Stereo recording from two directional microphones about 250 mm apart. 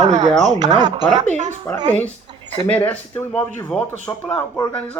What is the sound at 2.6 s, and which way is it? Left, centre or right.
Speech, centre.